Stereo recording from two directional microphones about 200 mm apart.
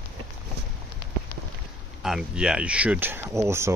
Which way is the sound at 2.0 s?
5° right (ahead or behind).